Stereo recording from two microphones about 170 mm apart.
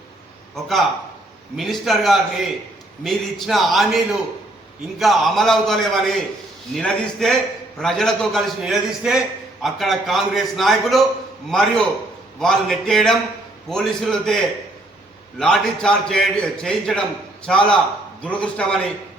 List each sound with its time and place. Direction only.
1.5 s a man's voice: centre (ahead or behind)